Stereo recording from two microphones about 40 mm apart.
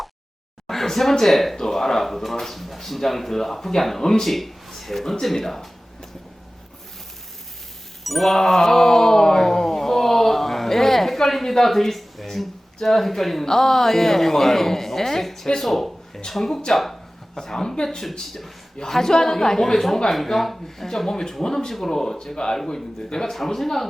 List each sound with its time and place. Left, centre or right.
0.7 s speech: centre
8.0 s wail: centre
16.3 s speech: centre
17.3 s speech: centre
17.8 s speech: centre